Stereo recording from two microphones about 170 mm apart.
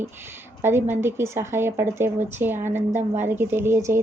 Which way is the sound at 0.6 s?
15° right (ahead or behind).